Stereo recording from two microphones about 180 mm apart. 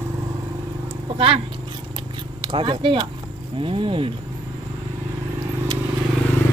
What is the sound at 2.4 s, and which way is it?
Speech, 25° right (ahead or behind).